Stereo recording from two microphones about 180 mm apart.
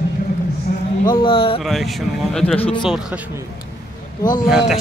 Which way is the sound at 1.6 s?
Centre (ahead or behind).